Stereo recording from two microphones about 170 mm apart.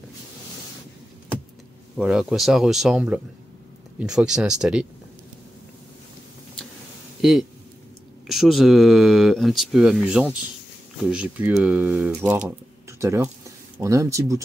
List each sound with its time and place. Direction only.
2.0 s speech: 5° right (ahead or behind)
7.2 s a sound: centre (ahead or behind)
8.3 s speech: centre (ahead or behind); by 14.4 s 20° right (ahead or behind)